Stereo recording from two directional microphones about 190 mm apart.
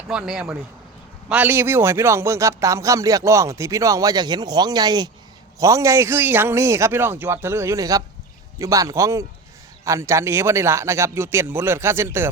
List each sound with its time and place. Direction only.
0.1 s speech: 5° right (ahead or behind)